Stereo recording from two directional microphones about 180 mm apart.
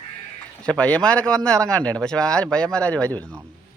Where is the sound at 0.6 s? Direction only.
5° left (ahead or behind).